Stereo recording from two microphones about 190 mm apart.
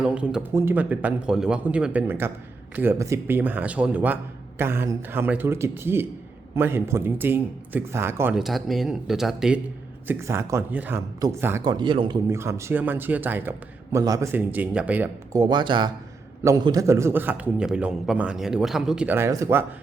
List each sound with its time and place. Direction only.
0.0 s speech: 5° right (ahead or behind)
10.1 s speech: 15° right (ahead or behind)